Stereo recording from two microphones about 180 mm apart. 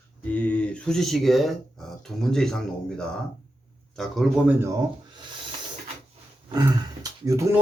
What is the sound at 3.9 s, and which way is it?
Speech, centre (ahead or behind).